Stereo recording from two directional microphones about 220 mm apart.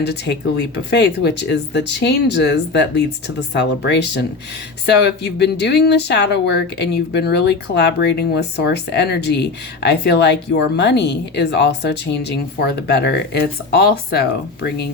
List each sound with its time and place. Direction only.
0.0 s speech: 50° left (ahead or behind)